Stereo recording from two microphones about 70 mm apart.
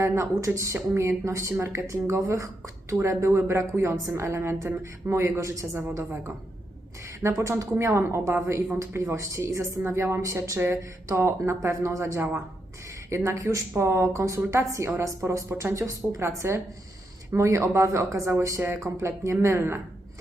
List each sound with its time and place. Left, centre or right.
0.0 s a woman's voice: right
7.2 s a woman's voice: right